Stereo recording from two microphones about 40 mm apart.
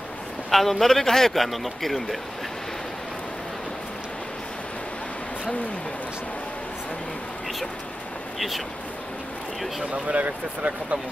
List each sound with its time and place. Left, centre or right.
0.5 s speech: centre
8.4 s speech: centre
10.0 s speech: right